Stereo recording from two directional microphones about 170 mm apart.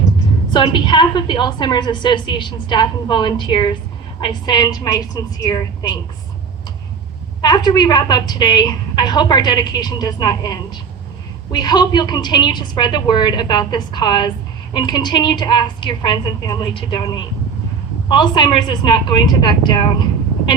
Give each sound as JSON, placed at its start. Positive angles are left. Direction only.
{"t": 0.5, "sound": "a woman's voice", "side_deg": 25}
{"t": 7.4, "sound": "a woman's voice", "side_deg": 25}